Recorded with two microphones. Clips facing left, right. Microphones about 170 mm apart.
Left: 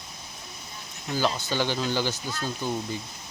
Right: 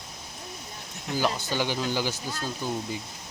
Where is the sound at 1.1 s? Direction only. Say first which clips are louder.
Left 1 dB; 15° right (ahead or behind).